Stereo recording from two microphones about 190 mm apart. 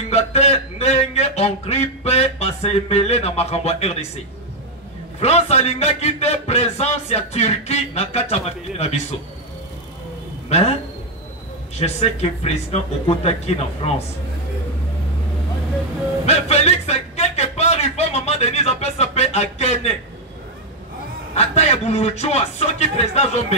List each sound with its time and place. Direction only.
0.1 s a man's voice: 35° left (ahead or behind)
5.2 s a man's voice: 35° left (ahead or behind)
10.5 s a man's voice: 35° left (ahead or behind)
16.3 s a sound: 35° left (ahead or behind)
21.4 s a man's voice: 35° left (ahead or behind)